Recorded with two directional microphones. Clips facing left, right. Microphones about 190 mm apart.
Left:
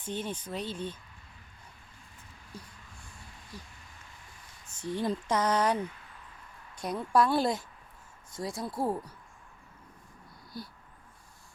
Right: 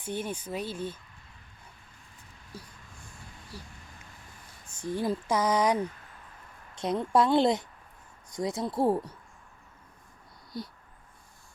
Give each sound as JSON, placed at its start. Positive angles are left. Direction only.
{"t": 0.0, "sound": "speech", "side_deg": -10}
{"t": 3.5, "sound": "speech", "side_deg": -10}
{"t": 4.7, "sound": "a woman's voice", "side_deg": -10}
{"t": 10.5, "sound": "a woman's voice", "side_deg": -20}